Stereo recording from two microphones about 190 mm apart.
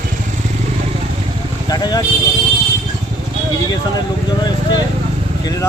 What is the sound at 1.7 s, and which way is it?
Speech, 20° left (ahead or behind).